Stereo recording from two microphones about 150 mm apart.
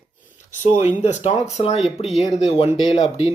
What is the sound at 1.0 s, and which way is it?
Speech, 45° left (ahead or behind).